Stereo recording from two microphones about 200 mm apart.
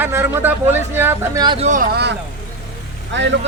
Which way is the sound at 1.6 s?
40° right (ahead or behind).